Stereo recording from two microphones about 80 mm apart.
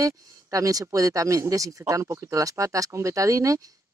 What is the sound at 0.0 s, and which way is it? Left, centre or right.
Speech, right.